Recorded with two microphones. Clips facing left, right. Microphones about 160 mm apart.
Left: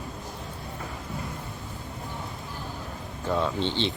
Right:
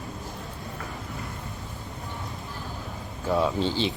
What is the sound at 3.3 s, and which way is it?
Speech, 10° right (ahead or behind).